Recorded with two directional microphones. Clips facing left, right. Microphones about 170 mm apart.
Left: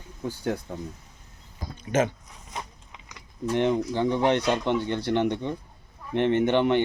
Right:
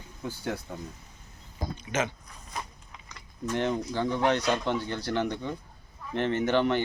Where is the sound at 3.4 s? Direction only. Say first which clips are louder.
Left 5 dB; 20° left (ahead or behind).